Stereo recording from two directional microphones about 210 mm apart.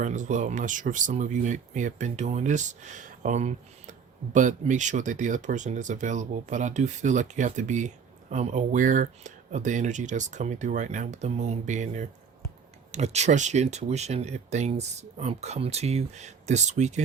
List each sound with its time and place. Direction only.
0.0 s speech: 35° right (ahead or behind)